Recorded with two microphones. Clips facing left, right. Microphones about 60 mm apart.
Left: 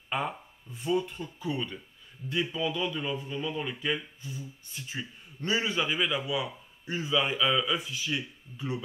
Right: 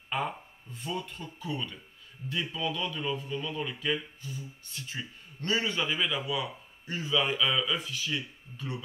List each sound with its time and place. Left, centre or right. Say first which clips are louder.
0.1 s a man's voice: left 1 dB; centre